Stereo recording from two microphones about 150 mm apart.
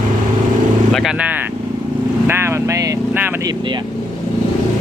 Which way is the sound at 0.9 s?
Centre (ahead or behind).